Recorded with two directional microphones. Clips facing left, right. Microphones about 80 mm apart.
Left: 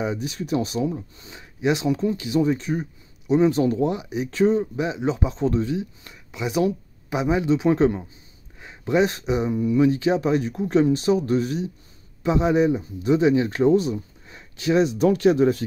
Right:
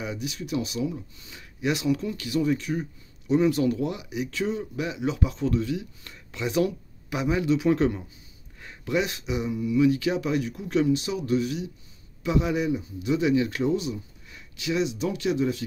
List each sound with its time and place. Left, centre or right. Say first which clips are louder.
0.0 s speech: left 6 dB; left
6.1 s a man's voice: left 1 dB; centre; by 15.6 s left